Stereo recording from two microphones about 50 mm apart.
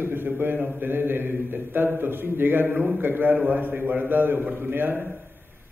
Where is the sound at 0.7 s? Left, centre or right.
Right.